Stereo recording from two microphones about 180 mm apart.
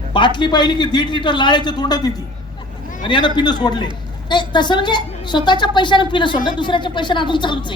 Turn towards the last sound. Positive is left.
turn(degrees=25)  # may be behind; listen again after turning